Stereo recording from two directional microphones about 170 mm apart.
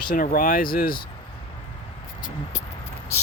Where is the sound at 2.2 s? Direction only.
50° left (ahead or behind).